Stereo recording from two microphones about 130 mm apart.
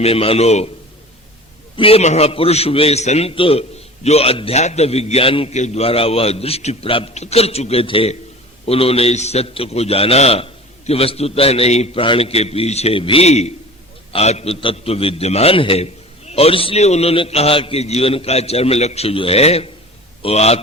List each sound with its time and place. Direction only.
0.0 s a man's voice: 50° left (ahead or behind)
1.7 s a man's voice: 45° left (ahead or behind)
5.5 s a man's voice: 60° left (ahead or behind)